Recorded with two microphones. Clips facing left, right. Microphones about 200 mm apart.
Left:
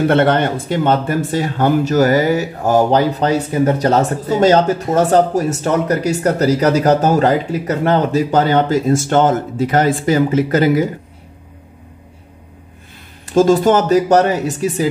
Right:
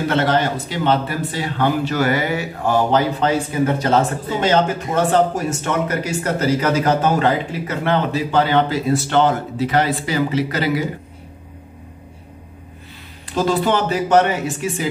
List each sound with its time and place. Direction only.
0.1 s speech: 55° left (ahead or behind)
13.3 s speech: 45° left (ahead or behind)